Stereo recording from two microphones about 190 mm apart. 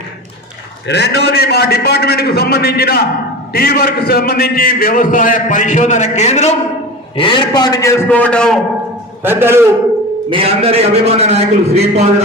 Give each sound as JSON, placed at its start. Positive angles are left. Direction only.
{"t": 0.9, "sound": "a man's voice", "side_deg": 60}
{"t": 7.2, "sound": "a man's voice", "side_deg": 25}
{"t": 9.2, "sound": "a man's voice", "side_deg": -10}
{"t": 10.2, "sound": "a man's voice", "side_deg": -30}